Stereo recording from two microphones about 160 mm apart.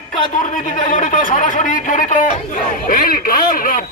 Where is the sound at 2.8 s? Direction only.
60° left (ahead or behind).